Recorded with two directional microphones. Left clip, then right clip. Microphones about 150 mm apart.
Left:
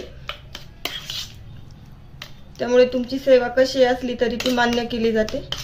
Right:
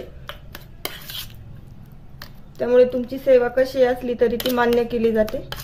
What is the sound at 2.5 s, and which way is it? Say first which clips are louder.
Speech: right 1 dB; 25° right (ahead or behind).